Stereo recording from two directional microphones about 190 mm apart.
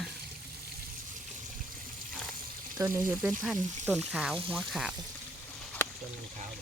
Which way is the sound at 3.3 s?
Centre (ahead or behind).